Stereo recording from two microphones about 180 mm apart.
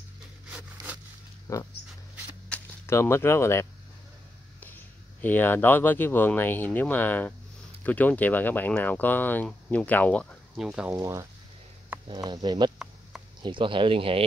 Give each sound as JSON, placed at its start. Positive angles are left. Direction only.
{"t": 1.5, "sound": "speech", "side_deg": 15}
{"t": 10.9, "sound": "speech", "side_deg": -15}